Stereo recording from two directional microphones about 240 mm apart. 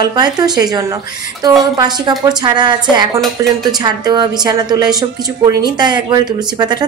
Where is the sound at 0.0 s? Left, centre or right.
Centre.